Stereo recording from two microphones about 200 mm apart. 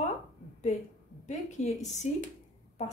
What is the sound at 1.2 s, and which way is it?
Speech, 35° left (ahead or behind).